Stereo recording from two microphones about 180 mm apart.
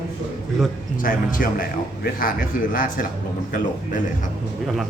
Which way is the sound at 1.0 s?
50° left (ahead or behind).